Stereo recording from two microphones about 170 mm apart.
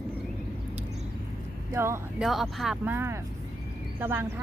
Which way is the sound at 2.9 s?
15° right (ahead or behind).